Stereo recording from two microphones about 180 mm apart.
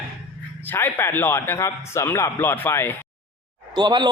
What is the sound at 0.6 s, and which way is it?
Speech, 10° left (ahead or behind).